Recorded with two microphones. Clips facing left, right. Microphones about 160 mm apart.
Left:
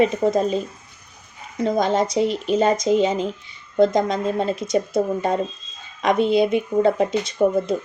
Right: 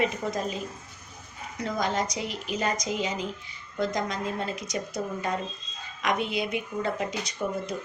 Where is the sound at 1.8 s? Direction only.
25° left (ahead or behind).